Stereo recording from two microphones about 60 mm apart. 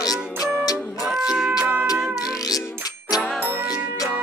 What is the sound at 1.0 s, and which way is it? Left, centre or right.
Music, centre.